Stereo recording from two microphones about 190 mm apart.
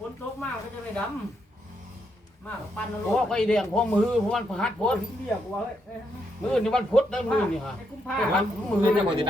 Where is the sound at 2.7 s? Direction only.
5° left (ahead or behind).